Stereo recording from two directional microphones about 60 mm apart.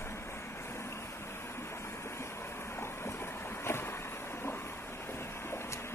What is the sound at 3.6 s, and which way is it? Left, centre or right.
Boat, left.